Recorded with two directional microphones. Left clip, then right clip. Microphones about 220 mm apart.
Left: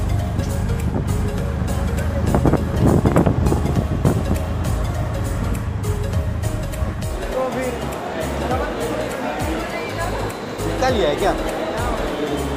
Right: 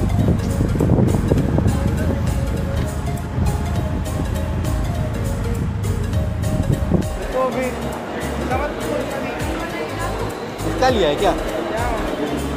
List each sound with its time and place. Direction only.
10.8 s music: 15° right (ahead or behind)